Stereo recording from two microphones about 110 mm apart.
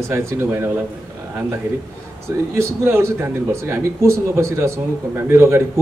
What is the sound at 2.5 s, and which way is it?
A man's voice, 25° right (ahead or behind).